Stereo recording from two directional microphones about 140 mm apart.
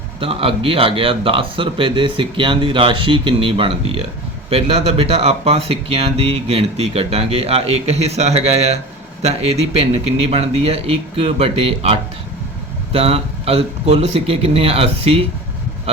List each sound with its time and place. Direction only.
0.2 s speech: 40° right (ahead or behind)